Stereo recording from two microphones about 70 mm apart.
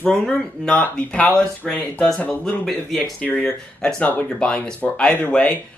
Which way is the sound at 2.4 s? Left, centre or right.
Centre.